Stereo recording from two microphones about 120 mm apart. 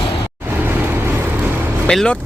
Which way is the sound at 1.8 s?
5° left (ahead or behind).